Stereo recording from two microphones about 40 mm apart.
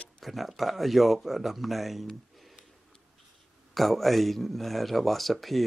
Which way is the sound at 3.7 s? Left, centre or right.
Centre.